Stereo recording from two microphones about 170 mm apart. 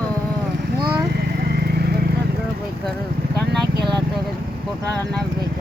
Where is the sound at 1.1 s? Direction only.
70° right (ahead or behind).